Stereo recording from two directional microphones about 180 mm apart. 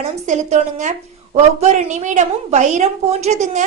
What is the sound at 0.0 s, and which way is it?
A woman's voice, 40° right (ahead or behind).